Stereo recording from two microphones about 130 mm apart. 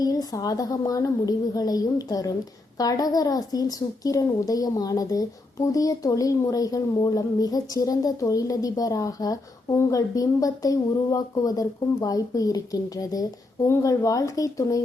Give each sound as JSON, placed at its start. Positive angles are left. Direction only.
{"t": 0.0, "sound": "speech", "side_deg": 30}